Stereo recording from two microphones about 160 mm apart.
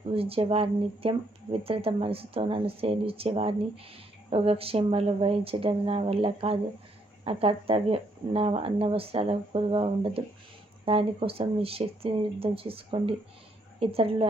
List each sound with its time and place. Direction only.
0.1 s speech: 35° right (ahead or behind)